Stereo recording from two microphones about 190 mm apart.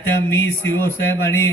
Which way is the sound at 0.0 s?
10° left (ahead or behind).